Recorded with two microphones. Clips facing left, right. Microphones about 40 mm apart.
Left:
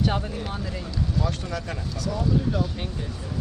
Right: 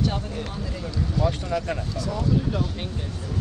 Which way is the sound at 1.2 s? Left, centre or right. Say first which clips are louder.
Right 4 dB; centre.